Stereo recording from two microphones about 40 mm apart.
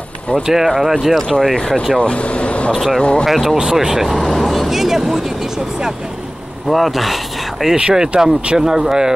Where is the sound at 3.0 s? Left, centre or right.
Left.